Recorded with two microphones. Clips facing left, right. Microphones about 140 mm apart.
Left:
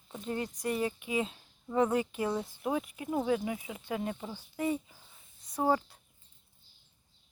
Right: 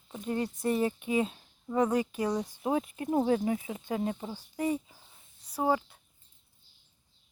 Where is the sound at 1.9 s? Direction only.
25° left (ahead or behind).